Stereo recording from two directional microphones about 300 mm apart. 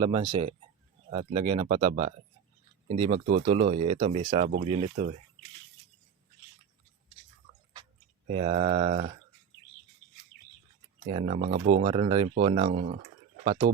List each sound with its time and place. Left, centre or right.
0.0 s speech: centre
8.3 s speech: centre
11.1 s speech: centre